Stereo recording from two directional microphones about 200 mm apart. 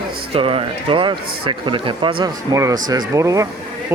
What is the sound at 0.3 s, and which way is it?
A man's voice, 30° right (ahead or behind).